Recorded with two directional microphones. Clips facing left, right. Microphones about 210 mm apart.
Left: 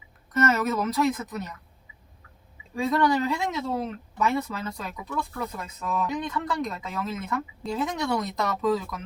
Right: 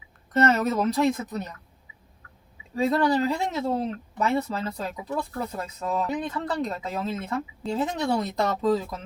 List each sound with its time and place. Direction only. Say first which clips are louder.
0.3 s speech: right 2 dB; 30° right (ahead or behind)
2.9 s speech: left 1 dB; 30° right (ahead or behind)